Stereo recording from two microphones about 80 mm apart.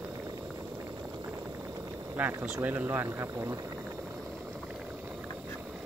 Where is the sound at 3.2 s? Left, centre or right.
Right.